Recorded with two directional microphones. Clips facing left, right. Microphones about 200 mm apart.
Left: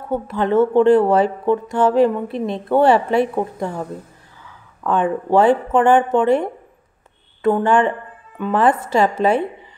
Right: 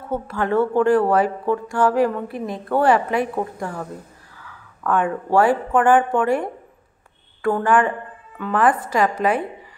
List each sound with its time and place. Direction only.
0.1 s speech: 20° left (ahead or behind)